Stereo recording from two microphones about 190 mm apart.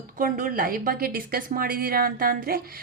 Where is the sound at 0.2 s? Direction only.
45° right (ahead or behind).